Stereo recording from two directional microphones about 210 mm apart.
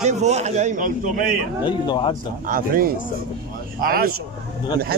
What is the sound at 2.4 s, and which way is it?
A man's voice, 40° right (ahead or behind).